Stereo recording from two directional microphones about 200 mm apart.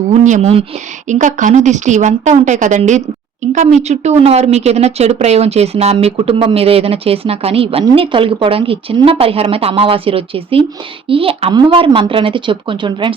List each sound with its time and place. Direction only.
0.1 s speech: 35° right (ahead or behind)